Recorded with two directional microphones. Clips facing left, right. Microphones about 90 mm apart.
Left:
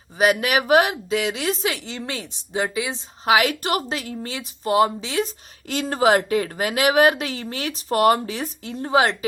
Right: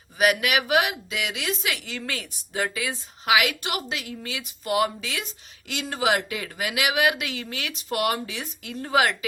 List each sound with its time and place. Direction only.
0.2 s a woman's voice: 30° left (ahead or behind)
3.2 s a woman's voice: 35° left (ahead or behind)
8.6 s a woman's voice: 25° left (ahead or behind)